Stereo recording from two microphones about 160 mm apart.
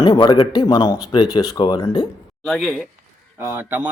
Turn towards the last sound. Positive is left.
turn(degrees=-15)  # may be behind; listen again after turning